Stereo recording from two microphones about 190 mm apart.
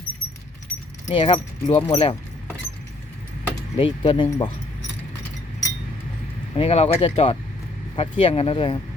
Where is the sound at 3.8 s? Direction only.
25° left (ahead or behind).